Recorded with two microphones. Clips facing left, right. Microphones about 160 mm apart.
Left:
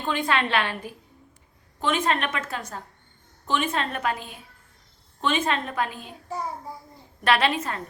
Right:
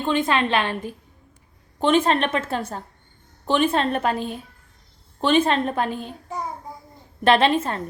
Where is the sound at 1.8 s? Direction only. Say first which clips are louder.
Right 6 dB; 30° right (ahead or behind).